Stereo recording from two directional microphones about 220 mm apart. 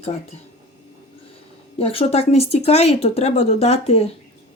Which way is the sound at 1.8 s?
25° left (ahead or behind).